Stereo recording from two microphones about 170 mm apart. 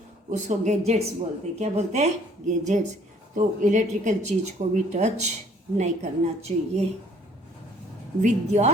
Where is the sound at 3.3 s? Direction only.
50° right (ahead or behind).